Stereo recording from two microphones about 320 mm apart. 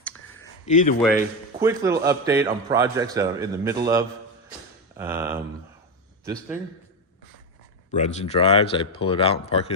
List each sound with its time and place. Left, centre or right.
0.6 s speech: left
1.0 s a man's voice: centre
7.9 s speech: left